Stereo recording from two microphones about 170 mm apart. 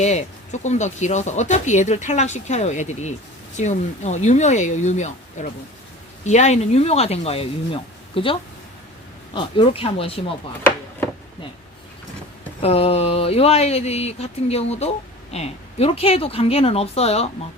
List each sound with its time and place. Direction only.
0.0 s speech: 40° left (ahead or behind)
12.6 s speech: 35° left (ahead or behind)